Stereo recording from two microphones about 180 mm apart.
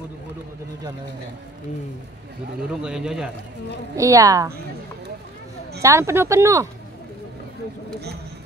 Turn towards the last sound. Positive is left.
turn(degrees=-15)  # may be behind; listen again after turning